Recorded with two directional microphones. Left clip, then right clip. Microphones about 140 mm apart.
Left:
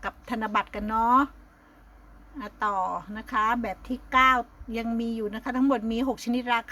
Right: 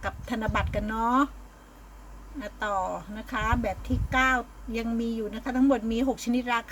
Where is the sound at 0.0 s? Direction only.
25° left (ahead or behind).